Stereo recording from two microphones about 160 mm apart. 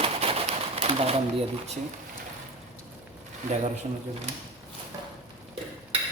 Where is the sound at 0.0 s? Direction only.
35° right (ahead or behind).